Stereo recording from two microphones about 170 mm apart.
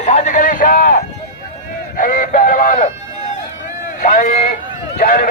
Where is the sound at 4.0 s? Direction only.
50° left (ahead or behind).